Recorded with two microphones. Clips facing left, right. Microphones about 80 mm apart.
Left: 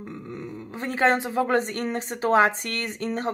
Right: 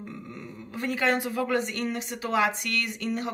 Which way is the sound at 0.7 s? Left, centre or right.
Left.